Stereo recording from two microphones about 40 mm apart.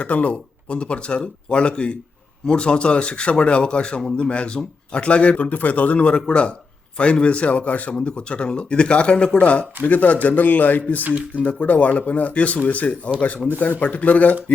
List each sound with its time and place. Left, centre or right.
0.0 s speech: left
5.4 s speech: left
7.9 s speech: left